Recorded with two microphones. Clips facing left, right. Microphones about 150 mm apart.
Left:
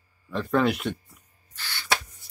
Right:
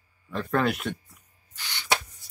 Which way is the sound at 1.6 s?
20° right (ahead or behind).